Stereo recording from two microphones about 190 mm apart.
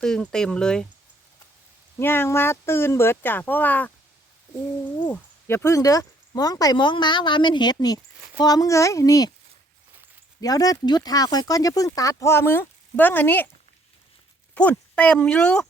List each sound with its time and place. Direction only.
0.0 s speech: 5° left (ahead or behind)
2.0 s speech: 10° left (ahead or behind)
4.9 s speech: 10° left (ahead or behind)
10.4 s speech: 20° left (ahead or behind)
14.5 s speech: 5° left (ahead or behind)